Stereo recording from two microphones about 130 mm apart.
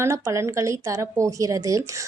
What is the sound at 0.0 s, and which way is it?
Speech, 20° right (ahead or behind).